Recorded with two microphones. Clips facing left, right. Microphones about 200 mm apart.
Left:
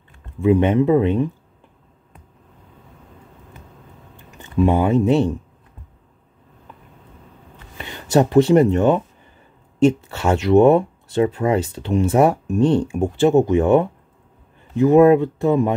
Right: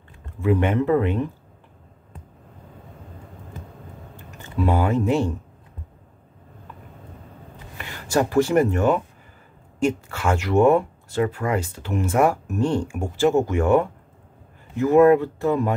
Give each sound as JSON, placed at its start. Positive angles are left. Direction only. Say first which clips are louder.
{"t": 0.2, "sound": "speech", "louder": "left 5 dB", "side_deg": 20}
{"t": 4.4, "sound": "a sound", "louder": "left 5 dB", "side_deg": 20}
{"t": 7.7, "sound": "speech", "louder": "left 5 dB", "side_deg": 20}
{"t": 10.0, "sound": "speech", "louder": "left 5 dB", "side_deg": 25}